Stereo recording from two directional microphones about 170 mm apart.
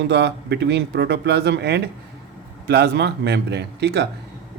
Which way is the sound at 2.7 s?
75° right (ahead or behind).